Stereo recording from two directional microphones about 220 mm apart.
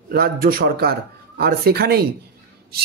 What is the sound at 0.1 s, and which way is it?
Speech, 40° right (ahead or behind).